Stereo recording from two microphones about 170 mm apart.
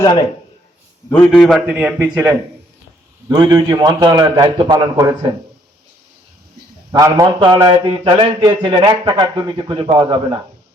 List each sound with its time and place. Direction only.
0.0 s speech: 25° left (ahead or behind)
1.1 s a man's voice: 5° left (ahead or behind); by 5.3 s 20° right (ahead or behind)
6.9 s a man's voice: 20° right (ahead or behind)